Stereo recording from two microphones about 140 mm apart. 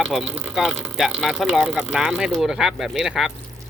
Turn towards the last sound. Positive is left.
turn(degrees=0)  # may be behind; listen again after turning